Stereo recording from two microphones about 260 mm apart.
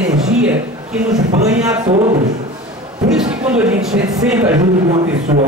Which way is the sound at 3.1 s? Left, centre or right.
Centre.